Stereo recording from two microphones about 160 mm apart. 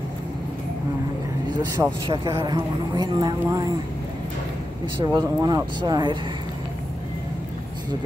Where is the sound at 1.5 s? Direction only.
25° right (ahead or behind).